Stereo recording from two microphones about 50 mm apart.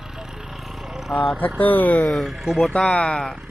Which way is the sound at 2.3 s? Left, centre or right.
Centre.